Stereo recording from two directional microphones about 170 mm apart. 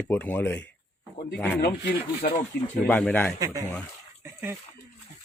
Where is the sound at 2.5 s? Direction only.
60° left (ahead or behind).